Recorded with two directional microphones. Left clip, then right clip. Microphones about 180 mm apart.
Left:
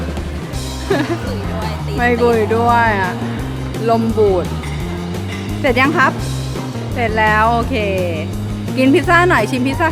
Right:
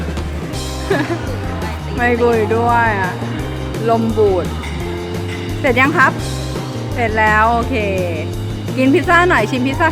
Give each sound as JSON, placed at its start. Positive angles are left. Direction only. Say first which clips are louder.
{"t": 0.9, "sound": "music", "louder": "even", "side_deg": 0}
{"t": 2.0, "sound": "speech", "louder": "even", "side_deg": 0}
{"t": 5.6, "sound": "speech", "louder": "right 1 dB", "side_deg": 0}